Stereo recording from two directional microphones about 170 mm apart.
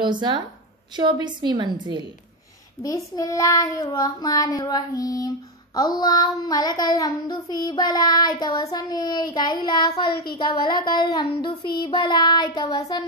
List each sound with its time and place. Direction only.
0.0 s a woman's voice: 25° right (ahead or behind)
2.8 s child singing: 20° left (ahead or behind)